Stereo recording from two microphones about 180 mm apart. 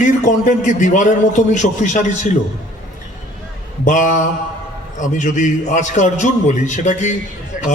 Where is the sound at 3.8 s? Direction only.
45° left (ahead or behind).